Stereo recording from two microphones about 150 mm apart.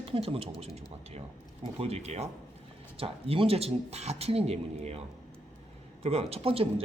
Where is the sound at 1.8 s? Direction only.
45° right (ahead or behind).